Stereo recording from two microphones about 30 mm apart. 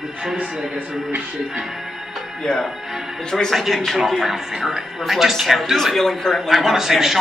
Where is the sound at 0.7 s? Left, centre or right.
Right.